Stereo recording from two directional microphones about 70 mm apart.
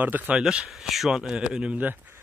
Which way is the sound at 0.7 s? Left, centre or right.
Centre.